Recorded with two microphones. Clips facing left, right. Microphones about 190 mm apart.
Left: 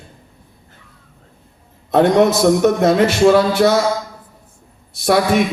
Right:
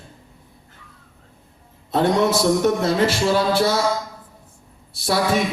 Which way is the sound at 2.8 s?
70° left (ahead or behind).